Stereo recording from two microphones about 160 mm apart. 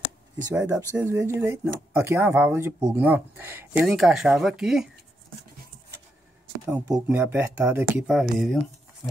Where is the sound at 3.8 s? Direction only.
Centre (ahead or behind).